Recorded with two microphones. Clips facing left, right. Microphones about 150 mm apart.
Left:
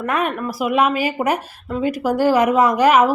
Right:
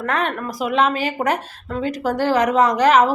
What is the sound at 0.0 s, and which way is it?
A woman's voice, 10° left (ahead or behind).